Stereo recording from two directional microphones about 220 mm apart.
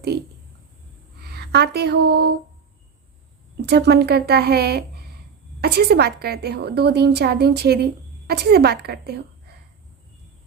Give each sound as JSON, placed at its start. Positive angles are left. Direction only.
{"t": 0.1, "sound": "a woman's voice", "side_deg": -45}
{"t": 3.7, "sound": "a woman's voice", "side_deg": -50}